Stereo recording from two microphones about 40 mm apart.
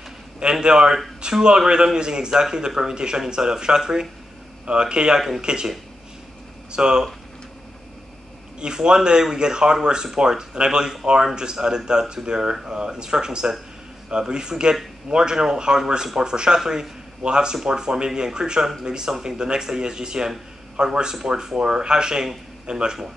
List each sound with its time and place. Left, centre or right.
0.4 s speech: right
6.7 s speech: centre
8.5 s speech: right